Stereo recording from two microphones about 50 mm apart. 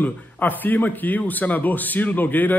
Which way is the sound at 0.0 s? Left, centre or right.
Left.